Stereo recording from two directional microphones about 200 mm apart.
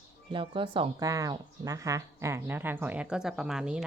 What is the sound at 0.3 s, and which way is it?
Speech, 25° right (ahead or behind).